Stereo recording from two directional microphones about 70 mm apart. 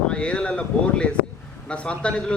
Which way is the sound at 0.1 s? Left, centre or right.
Centre.